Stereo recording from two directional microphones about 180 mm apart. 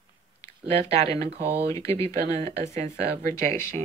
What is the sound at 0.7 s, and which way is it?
Speech, 35° right (ahead or behind).